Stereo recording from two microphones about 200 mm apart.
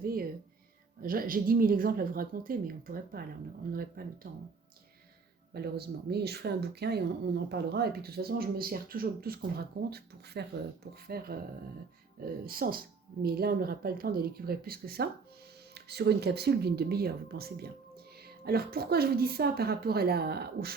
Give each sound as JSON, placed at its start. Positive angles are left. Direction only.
{"t": 0.0, "sound": "music", "side_deg": -45}
{"t": 1.0, "sound": "speech", "side_deg": -45}
{"t": 5.5, "sound": "speech", "side_deg": -55}